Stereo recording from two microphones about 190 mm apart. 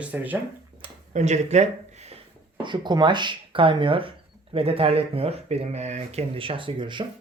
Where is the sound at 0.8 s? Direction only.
35° right (ahead or behind).